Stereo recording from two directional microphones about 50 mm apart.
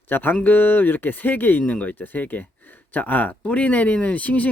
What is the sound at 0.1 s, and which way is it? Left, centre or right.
Speech, left.